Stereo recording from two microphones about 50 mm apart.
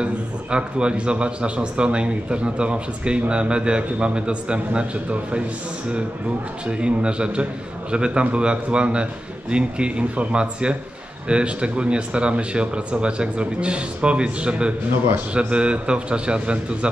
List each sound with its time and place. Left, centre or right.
0.0 s a man's voice: centre
6.7 s a man's voice: right